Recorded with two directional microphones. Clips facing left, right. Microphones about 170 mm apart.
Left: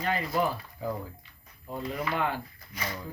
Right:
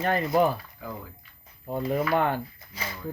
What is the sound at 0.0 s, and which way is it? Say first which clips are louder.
Speech: right 5 dB; 50° right (ahead or behind).